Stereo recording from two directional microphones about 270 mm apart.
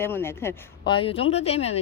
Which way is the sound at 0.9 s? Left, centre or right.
Centre.